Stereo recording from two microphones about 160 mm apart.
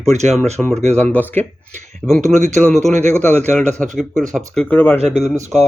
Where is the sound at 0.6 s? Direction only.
5° right (ahead or behind).